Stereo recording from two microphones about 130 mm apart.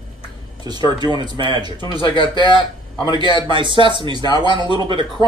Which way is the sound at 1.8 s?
40° left (ahead or behind).